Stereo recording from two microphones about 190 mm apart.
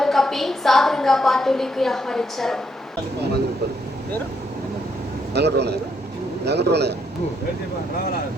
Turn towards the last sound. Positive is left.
turn(degrees=-60)  # may be behind; listen again after turning